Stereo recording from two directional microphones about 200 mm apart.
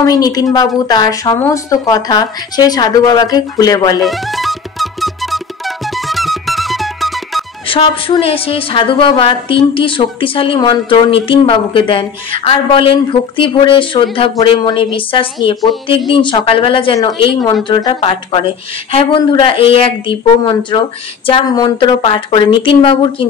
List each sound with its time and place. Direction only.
0.0 s a woman's voice: 20° left (ahead or behind)
4.0 s music: centre (ahead or behind)
7.6 s a woman's voice: 25° left (ahead or behind)